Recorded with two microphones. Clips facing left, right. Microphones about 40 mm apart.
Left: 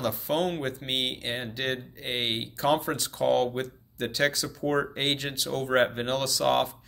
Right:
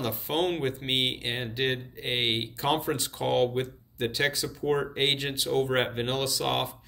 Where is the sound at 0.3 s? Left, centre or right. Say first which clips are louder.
Right 1 dB; centre.